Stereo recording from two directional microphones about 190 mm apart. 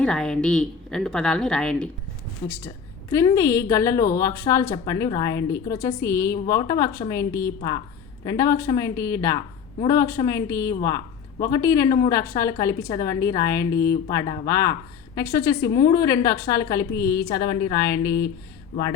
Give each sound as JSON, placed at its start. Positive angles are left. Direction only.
{"t": 0.0, "sound": "a woman's voice", "side_deg": 5}